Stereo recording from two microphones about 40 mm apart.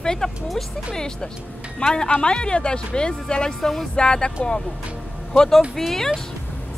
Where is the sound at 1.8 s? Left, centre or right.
Centre.